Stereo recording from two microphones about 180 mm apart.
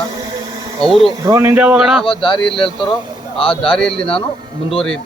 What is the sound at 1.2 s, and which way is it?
Speech, 15° right (ahead or behind).